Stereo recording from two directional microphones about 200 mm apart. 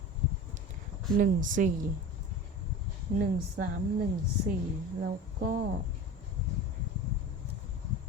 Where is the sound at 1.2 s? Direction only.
40° right (ahead or behind).